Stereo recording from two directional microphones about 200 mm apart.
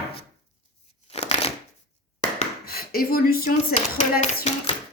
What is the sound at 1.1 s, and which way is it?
Shuffling cards, 30° left (ahead or behind).